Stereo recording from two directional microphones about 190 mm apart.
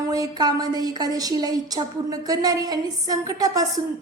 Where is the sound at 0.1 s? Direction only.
20° right (ahead or behind).